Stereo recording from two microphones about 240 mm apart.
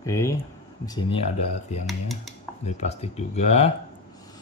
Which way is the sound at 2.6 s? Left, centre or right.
Left.